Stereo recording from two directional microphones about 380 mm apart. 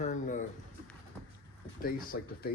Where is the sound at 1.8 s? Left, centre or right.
Left.